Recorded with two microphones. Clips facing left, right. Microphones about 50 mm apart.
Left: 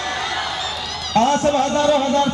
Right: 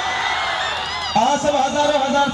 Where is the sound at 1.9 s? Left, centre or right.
Centre.